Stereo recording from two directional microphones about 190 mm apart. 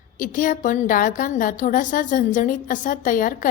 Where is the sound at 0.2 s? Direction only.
45° left (ahead or behind).